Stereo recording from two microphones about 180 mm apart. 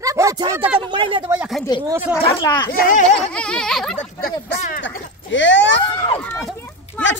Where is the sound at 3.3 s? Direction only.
5° left (ahead or behind).